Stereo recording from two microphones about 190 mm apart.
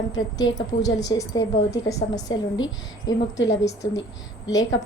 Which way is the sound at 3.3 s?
70° left (ahead or behind).